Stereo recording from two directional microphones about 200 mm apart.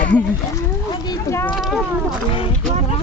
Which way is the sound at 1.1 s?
15° left (ahead or behind).